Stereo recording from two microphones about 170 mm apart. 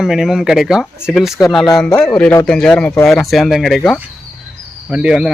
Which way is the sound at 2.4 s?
5° left (ahead or behind).